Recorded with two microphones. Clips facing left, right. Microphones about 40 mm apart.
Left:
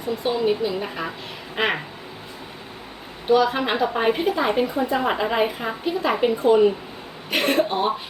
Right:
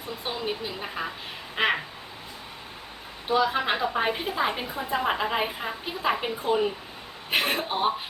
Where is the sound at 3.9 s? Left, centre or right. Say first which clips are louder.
Left 5 dB; centre.